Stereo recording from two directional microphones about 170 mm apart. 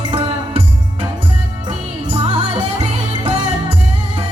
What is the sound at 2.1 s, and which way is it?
Music, 30° right (ahead or behind).